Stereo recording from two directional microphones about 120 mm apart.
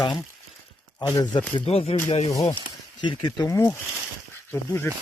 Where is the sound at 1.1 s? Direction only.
35° left (ahead or behind).